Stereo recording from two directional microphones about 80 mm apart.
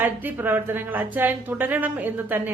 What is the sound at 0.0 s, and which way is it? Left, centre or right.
A woman's voice, right.